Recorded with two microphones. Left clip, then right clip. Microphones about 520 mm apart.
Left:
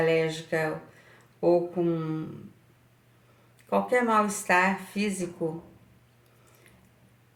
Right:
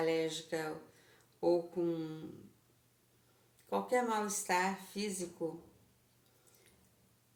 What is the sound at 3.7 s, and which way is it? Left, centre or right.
Speech, right.